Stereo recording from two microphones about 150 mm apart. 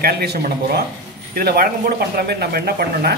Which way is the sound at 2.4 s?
90° right.